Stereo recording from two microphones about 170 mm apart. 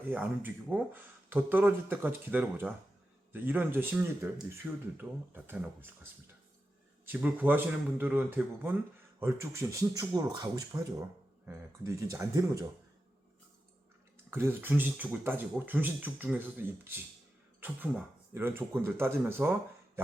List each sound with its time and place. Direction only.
0.1 s speech: 10° right (ahead or behind)
7.0 s speech: 10° right (ahead or behind)
14.3 s speech: 15° right (ahead or behind)